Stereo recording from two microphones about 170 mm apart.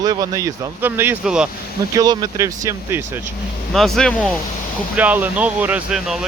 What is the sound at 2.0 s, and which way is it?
Speech, 20° right (ahead or behind).